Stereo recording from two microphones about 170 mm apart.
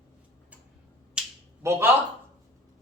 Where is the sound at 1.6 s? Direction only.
15° right (ahead or behind).